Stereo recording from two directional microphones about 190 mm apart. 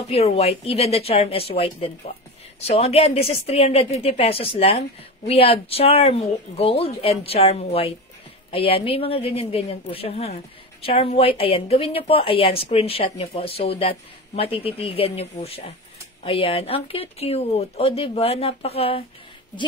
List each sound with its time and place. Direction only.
0.1 s a woman's voice: 30° left (ahead or behind)